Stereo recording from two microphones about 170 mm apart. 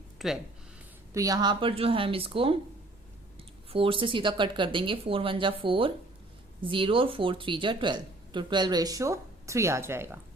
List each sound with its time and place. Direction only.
0.2 s speech: centre (ahead or behind)
1.1 s speech: 20° right (ahead or behind)
3.7 s speech: 30° right (ahead or behind); by 10.2 s 15° right (ahead or behind)